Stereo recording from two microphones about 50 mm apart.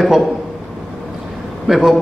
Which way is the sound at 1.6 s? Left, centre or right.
Centre.